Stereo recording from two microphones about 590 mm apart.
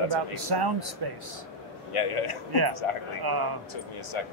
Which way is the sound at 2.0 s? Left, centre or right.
Left.